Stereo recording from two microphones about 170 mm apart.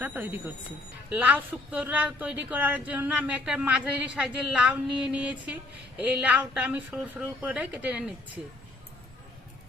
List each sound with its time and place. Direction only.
0.0 s speech: 10° right (ahead or behind)